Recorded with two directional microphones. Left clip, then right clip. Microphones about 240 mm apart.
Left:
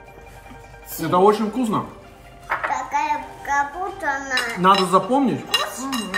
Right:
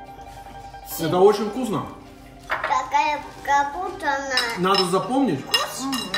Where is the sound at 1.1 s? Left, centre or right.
Centre.